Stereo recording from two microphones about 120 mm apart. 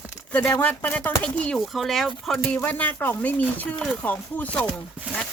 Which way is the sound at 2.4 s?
15° left (ahead or behind).